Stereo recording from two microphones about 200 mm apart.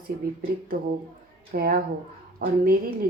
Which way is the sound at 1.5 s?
45° right (ahead or behind).